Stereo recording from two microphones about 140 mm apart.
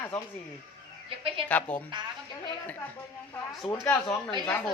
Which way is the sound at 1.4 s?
10° left (ahead or behind).